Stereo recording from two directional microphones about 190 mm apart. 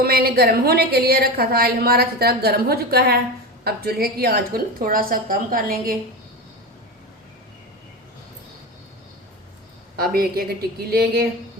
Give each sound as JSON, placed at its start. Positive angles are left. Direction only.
{"t": 0.0, "sound": "a woman's voice", "side_deg": -55}
{"t": 10.0, "sound": "a woman's voice", "side_deg": -50}